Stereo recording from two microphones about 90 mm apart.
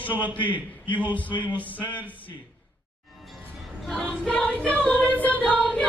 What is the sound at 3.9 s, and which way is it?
Music, 5° left (ahead or behind).